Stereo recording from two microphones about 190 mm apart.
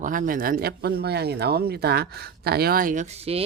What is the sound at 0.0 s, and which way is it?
A woman's voice, 45° right (ahead or behind).